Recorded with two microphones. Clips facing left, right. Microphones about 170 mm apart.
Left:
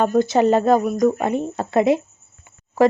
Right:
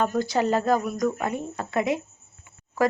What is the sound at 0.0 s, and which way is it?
Speech, 20° left (ahead or behind).